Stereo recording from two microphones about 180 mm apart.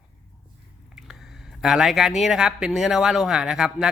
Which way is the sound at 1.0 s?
Centre (ahead or behind).